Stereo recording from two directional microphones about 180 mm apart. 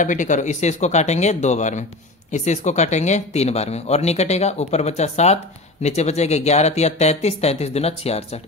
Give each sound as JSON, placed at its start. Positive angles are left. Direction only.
{"t": 0.0, "sound": "speech", "side_deg": 45}